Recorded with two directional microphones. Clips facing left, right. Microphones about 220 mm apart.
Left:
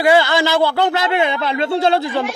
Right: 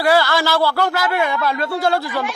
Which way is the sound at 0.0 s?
20° left (ahead or behind).